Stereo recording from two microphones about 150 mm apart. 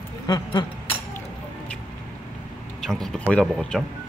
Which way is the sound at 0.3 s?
30° left (ahead or behind).